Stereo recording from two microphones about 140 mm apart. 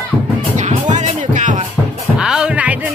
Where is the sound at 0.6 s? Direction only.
60° right (ahead or behind).